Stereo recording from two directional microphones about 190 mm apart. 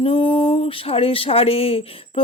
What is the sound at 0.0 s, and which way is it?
Speech, 30° left (ahead or behind).